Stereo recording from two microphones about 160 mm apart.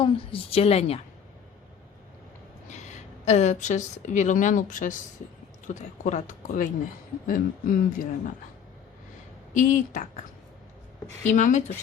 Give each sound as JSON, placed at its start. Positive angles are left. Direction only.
{"t": 0.0, "sound": "a woman's voice", "side_deg": 35}
{"t": 2.6, "sound": "a woman's voice", "side_deg": 45}
{"t": 9.6, "sound": "speech", "side_deg": 50}
{"t": 11.3, "sound": "speech", "side_deg": 50}